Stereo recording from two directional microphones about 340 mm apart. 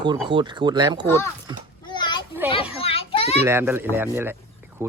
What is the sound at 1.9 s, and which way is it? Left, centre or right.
Children playing, centre.